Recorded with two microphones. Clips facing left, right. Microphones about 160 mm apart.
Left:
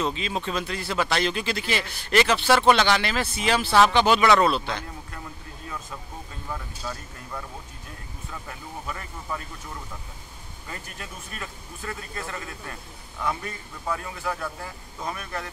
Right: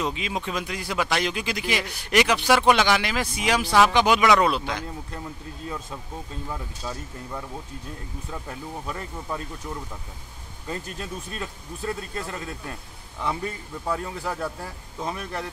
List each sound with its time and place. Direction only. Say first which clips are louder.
0.0 s speech: left 1 dB; 10° right (ahead or behind)
6.5 s speech: left 1 dB; 15° right (ahead or behind)
8.8 s speech: right 2 dB; 30° right (ahead or behind)
10.7 s speech: right 7 dB; 30° right (ahead or behind)
13.9 s speech: right 2 dB; 35° right (ahead or behind)